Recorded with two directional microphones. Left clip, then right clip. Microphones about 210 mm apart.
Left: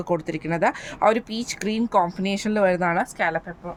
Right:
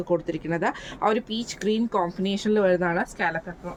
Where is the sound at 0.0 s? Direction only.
45° left (ahead or behind).